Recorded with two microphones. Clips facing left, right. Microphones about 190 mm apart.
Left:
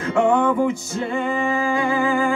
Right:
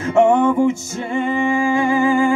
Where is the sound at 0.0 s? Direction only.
25° right (ahead or behind).